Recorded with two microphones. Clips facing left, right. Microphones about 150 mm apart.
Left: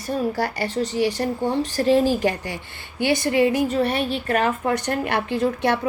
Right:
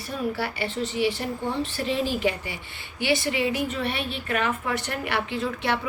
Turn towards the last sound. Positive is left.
turn(degrees=45)  # may be behind; listen again after turning